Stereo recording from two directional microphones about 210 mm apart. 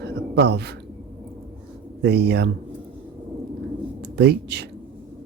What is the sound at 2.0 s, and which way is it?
Speech, 50° right (ahead or behind).